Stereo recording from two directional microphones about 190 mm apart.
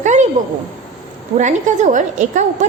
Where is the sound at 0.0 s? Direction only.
40° right (ahead or behind).